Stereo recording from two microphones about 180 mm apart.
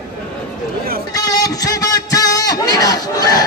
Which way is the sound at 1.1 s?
20° left (ahead or behind).